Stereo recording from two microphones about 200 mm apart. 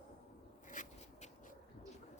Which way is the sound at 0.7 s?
40° left (ahead or behind).